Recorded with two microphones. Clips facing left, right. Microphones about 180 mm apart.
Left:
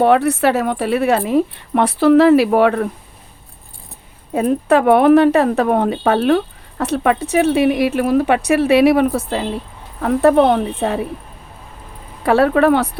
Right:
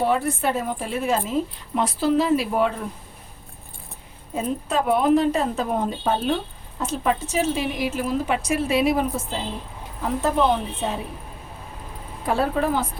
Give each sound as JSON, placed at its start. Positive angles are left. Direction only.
{"t": 0.0, "sound": "speech", "side_deg": 70}
{"t": 4.4, "sound": "a woman's voice", "side_deg": 65}
{"t": 12.2, "sound": "speech", "side_deg": 75}